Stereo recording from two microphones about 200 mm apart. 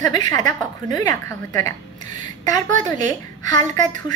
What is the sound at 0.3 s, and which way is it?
A woman's voice, 15° left (ahead or behind).